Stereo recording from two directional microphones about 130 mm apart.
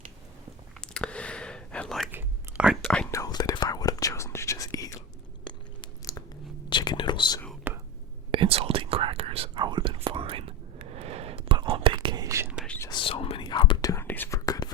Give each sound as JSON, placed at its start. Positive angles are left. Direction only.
{"t": 0.8, "sound": "whispering", "side_deg": 5}
{"t": 2.1, "sound": "whispering", "side_deg": -5}
{"t": 3.1, "sound": "whispering", "side_deg": 30}
{"t": 5.8, "sound": "biting", "side_deg": 25}
{"t": 6.7, "sound": "whispering", "side_deg": 35}
{"t": 7.7, "sound": "whispering", "side_deg": -15}
{"t": 8.3, "sound": "whispering", "side_deg": -45}
{"t": 10.9, "sound": "a sound", "side_deg": -50}
{"t": 11.5, "sound": "whispering", "side_deg": -40}
{"t": 11.9, "sound": "whispering", "side_deg": -30}
{"t": 12.9, "sound": "whispering", "side_deg": 40}
{"t": 13.9, "sound": "whispering", "side_deg": 15}